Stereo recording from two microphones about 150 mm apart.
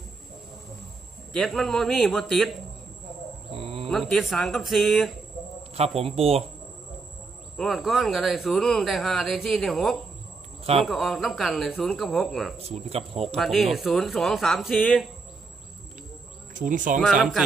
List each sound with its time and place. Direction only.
1.3 s speech: centre (ahead or behind)
3.5 s a sound: 40° right (ahead or behind)
4.1 s speech: centre (ahead or behind)
5.7 s a man's voice: 45° right (ahead or behind)
7.5 s speech: centre (ahead or behind)
12.6 s speech: 45° right (ahead or behind)
13.2 s speech: centre (ahead or behind)
16.6 s speech: 60° right (ahead or behind)
17.0 s speech: centre (ahead or behind)